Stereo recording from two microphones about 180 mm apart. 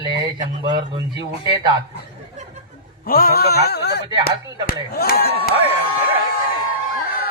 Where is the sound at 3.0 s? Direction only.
55° left (ahead or behind).